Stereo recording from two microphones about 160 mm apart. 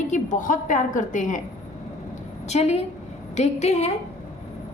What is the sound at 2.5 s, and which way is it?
A woman's voice, 40° left (ahead or behind).